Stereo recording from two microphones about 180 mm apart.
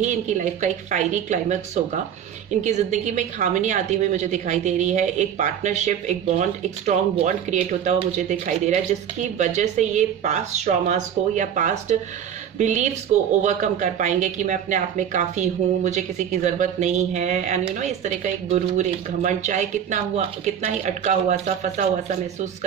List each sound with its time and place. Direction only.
0.0 s a woman's voice: 40° right (ahead or behind)
2.6 s a woman's voice: 40° right (ahead or behind)